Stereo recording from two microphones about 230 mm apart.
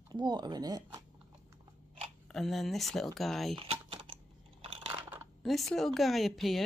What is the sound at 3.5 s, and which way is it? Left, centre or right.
Typing, right.